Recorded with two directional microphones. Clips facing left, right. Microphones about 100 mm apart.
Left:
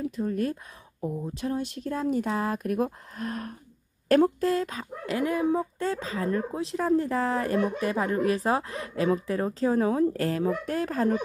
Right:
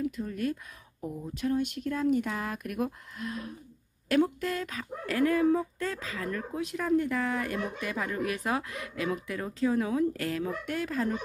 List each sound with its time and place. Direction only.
0.0 s speech: 35° left (ahead or behind)